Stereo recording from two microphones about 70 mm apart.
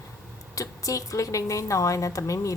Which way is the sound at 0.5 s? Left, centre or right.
Left.